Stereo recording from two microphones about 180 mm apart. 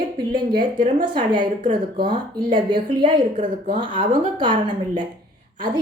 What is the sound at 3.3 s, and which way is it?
Speech, 45° right (ahead or behind).